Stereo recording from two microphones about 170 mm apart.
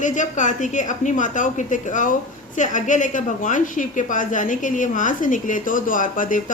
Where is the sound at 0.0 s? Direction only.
45° left (ahead or behind).